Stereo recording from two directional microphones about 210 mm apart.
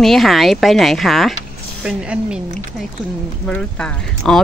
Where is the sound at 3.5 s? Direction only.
5° left (ahead or behind).